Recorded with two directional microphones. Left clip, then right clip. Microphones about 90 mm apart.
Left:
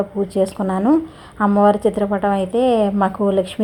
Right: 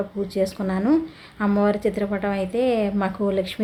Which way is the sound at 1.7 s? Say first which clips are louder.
Left 6 dB; 35° left (ahead or behind).